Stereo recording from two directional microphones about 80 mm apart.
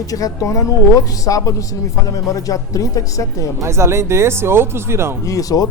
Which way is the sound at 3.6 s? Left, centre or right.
Right.